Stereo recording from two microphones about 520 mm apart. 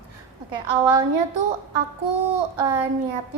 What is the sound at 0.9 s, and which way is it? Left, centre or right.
A woman's voice, right.